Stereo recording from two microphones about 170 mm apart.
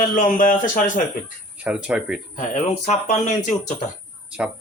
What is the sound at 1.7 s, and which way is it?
Speech, 5° right (ahead or behind).